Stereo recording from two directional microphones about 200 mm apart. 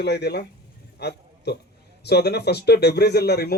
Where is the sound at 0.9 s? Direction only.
55° left (ahead or behind).